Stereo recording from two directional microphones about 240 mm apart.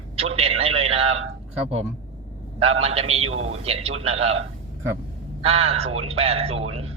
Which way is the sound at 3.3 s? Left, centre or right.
Right.